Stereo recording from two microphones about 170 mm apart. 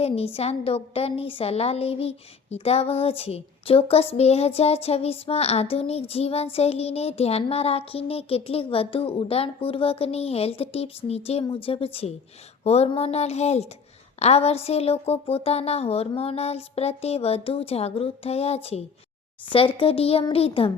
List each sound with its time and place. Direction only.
0.3 s a woman's voice: 35° left (ahead or behind)